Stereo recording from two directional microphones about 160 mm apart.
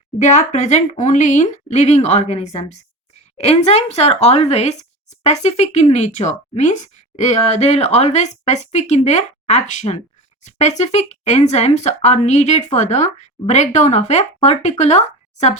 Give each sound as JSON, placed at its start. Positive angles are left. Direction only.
{"t": 0.2, "sound": "speech", "side_deg": 50}